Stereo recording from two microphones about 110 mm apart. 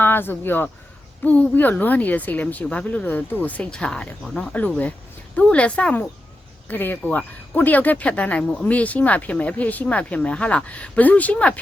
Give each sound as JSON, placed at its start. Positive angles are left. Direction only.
{"t": 0.0, "sound": "speech", "side_deg": 20}